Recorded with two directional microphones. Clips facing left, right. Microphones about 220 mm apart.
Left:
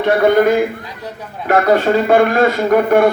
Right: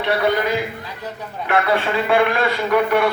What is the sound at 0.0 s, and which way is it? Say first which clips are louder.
A man's voice: left 8 dB; 50° left (ahead or behind).